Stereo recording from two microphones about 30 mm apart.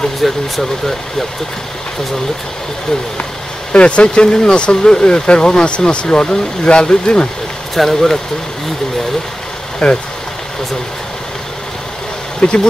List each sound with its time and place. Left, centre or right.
0.2 s speech: centre
3.7 s speech: left
7.7 s speech: centre
9.8 s speech: left
12.4 s speech: left